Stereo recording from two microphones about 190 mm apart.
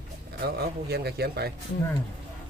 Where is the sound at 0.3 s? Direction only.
55° right (ahead or behind).